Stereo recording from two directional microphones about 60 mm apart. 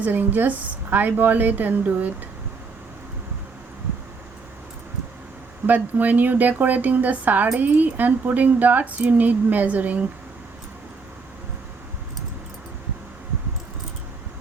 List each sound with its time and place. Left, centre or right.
0.0 s speech: right
5.6 s speech: right